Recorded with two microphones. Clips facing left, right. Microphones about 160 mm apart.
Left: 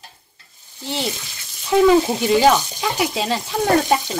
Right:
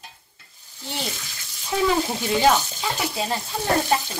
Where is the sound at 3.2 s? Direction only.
90° left.